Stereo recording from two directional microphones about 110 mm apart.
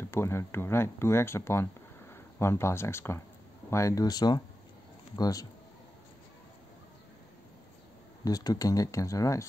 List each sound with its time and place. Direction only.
0.1 s speech: 25° left (ahead or behind)
8.2 s speech: 35° left (ahead or behind)